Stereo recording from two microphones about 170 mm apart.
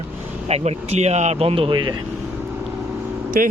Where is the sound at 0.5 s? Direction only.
40° right (ahead or behind).